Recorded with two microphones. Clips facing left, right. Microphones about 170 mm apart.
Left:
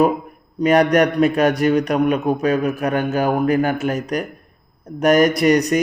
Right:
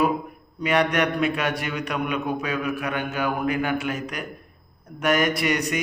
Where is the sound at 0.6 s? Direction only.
40° left (ahead or behind).